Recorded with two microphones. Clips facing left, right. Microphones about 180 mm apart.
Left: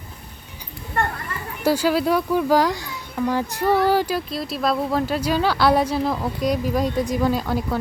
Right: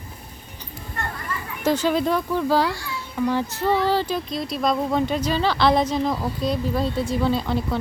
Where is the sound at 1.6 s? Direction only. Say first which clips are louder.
Left 1 dB; 10° left (ahead or behind).